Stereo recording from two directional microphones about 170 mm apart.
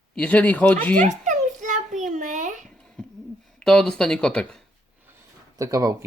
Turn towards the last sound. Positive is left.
turn(degrees=-20)  # may be behind; listen again after turning